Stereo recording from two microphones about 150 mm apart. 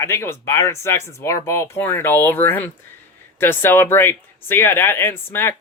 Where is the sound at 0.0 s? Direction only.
15° left (ahead or behind).